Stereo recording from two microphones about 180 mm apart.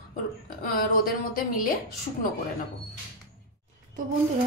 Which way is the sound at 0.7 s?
50° left (ahead or behind).